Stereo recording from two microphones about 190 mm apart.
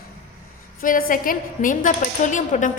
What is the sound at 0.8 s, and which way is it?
A woman's voice, 50° left (ahead or behind).